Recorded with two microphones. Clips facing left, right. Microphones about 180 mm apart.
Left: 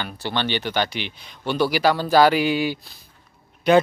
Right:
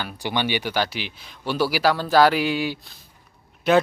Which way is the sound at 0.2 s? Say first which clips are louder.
Right 1 dB; 10° right (ahead or behind).